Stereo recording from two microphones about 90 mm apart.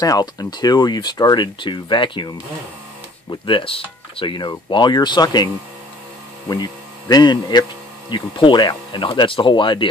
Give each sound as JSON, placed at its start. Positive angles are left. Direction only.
{"t": 0.0, "sound": "speech", "side_deg": 45}
{"t": 6.5, "sound": "speech", "side_deg": 50}